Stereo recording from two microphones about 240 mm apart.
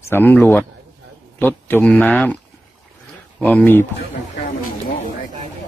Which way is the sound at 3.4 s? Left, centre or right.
Centre.